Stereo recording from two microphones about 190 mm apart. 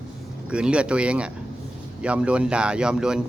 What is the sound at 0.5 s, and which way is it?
Speech, 5° right (ahead or behind).